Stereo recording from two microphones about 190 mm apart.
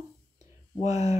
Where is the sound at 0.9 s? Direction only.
20° right (ahead or behind).